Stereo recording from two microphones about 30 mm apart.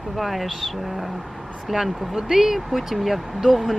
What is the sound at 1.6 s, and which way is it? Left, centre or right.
Speech, centre.